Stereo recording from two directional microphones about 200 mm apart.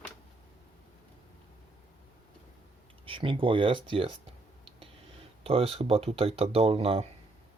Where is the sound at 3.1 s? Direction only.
25° right (ahead or behind).